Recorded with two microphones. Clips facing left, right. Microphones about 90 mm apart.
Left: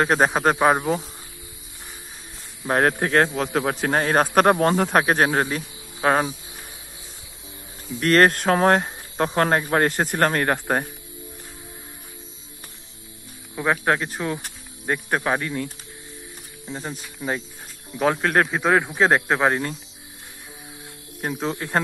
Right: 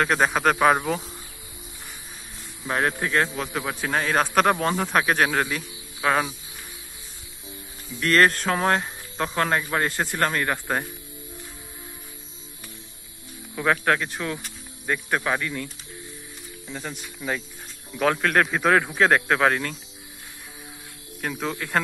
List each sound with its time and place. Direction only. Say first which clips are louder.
0.0 s speech: left 2 dB; 35° left (ahead or behind)
2.7 s speech: left 4 dB; 45° left (ahead or behind)
3.9 s speech: left 2 dB; 40° left (ahead or behind)
8.0 s speech: left 3 dB; 40° left (ahead or behind)
13.6 s speech: left 1 dB; 20° left (ahead or behind)
14.0 s speech: left 3 dB; 30° left (ahead or behind)
17.9 s speech: left 1 dB; 20° left (ahead or behind)
21.2 s speech: left 2 dB; 30° left (ahead or behind)